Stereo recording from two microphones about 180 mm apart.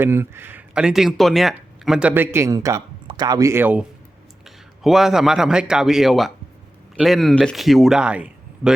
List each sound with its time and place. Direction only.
0.0 s a man's voice: 15° right (ahead or behind)